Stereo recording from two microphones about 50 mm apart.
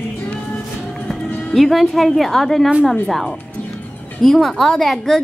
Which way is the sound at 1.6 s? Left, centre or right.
Centre.